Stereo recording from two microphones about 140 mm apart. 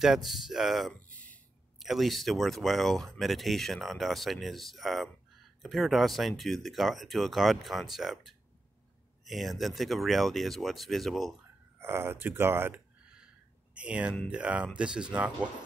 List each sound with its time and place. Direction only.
0.0 s speech: centre (ahead or behind)
1.0 s a sound: 10° left (ahead or behind)
1.8 s speech: centre (ahead or behind)
11.8 s speech: 15° right (ahead or behind)